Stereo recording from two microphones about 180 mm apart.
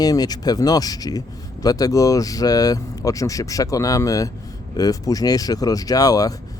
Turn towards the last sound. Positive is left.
turn(degrees=20)  # may be behind; listen again after turning